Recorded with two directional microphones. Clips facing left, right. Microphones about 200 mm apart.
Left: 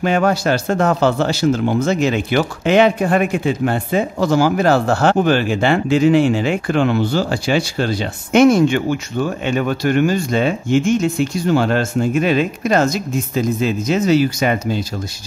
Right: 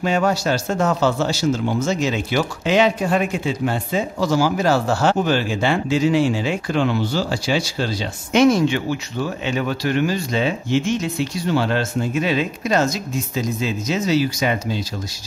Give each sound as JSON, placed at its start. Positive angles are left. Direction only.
{"t": 0.0, "sound": "speech", "side_deg": 55}